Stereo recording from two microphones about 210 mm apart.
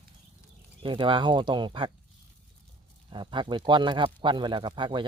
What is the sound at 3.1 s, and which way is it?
A man's voice, 20° right (ahead or behind).